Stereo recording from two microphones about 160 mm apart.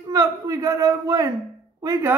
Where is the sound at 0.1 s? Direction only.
20° right (ahead or behind).